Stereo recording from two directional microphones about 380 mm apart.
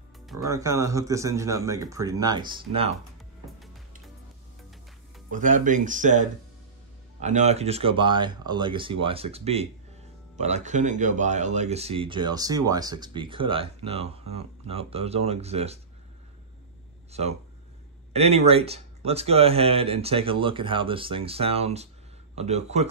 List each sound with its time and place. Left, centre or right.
0.3 s speech: centre
3.5 s music: centre
5.3 s speech: centre
17.1 s speech: centre